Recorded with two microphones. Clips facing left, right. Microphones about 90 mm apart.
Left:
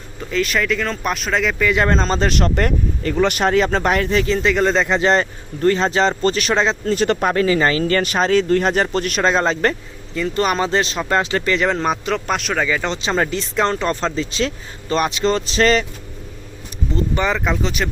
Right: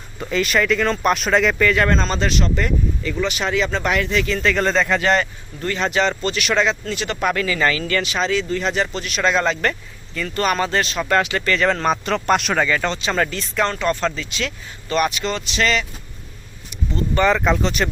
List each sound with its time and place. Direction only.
0.2 s speech: centre (ahead or behind)
1.7 s speech: 25° left (ahead or behind)
2.3 s speech: 55° left (ahead or behind); by 4.4 s 30° left (ahead or behind)
4.4 s speech: 15° left (ahead or behind); by 9.2 s 50° left (ahead or behind)
9.2 s speech: 30° left (ahead or behind)
11.4 s speech: 15° left (ahead or behind)
12.0 s speech: 5° left (ahead or behind)
12.9 s speech: 25° left (ahead or behind)
17.3 s speech: centre (ahead or behind)